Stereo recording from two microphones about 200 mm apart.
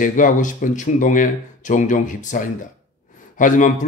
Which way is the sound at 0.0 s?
40° left (ahead or behind).